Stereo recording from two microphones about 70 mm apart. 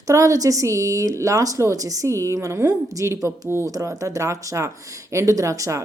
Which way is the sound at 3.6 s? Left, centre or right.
Right.